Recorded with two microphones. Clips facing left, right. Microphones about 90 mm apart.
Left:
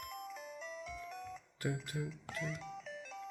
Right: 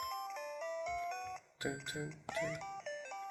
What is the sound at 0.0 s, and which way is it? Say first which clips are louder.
Music: right 4 dB; 65° right (ahead or behind).